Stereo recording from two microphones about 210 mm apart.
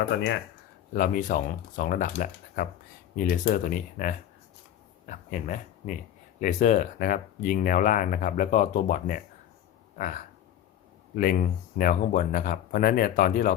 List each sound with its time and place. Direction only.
0.9 s speech: 40° left (ahead or behind)
11.1 s speech: 40° left (ahead or behind)